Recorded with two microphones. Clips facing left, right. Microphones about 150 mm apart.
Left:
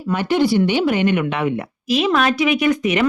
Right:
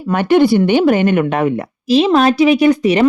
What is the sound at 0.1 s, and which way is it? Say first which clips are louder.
Speech: right 6 dB; 55° right (ahead or behind).